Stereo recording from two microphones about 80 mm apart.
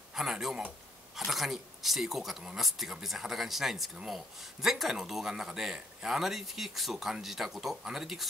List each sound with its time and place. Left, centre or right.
0.1 s speech: centre